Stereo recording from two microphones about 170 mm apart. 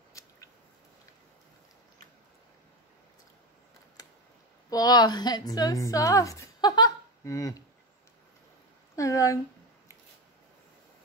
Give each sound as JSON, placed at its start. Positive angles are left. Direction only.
{"t": 0.2, "sound": "a sound", "side_deg": 20}
{"t": 4.6, "sound": "a woman's voice", "side_deg": 20}
{"t": 8.9, "sound": "speech", "side_deg": 20}